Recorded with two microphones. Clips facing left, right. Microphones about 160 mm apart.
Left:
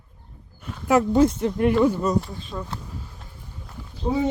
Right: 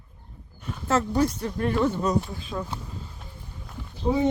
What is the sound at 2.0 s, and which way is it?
Speech, centre (ahead or behind).